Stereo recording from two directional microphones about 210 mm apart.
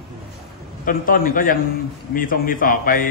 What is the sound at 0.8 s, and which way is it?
A man's voice, 40° left (ahead or behind).